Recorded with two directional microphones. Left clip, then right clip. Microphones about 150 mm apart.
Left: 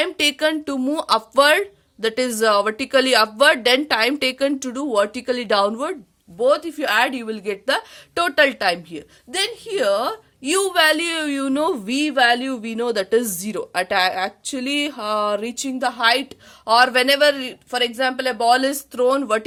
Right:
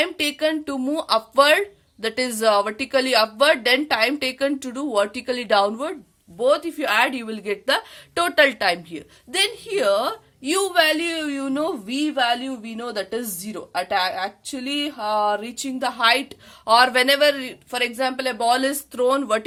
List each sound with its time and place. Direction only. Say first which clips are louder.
0.0 s speech: left 3 dB; 45° left (ahead or behind)
6.4 s a woman's voice: left 2 dB; 25° left (ahead or behind)